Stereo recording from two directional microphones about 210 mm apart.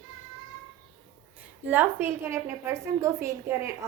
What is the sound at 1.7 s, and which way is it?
A woman's voice, 10° right (ahead or behind).